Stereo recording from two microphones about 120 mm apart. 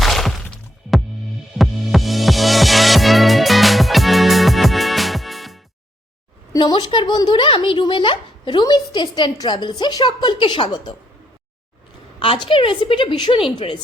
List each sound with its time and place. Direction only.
0.0 s music: centre (ahead or behind)
1.5 s music: centre (ahead or behind)
6.6 s speech: 40° left (ahead or behind)
12.2 s a woman's voice: 45° left (ahead or behind)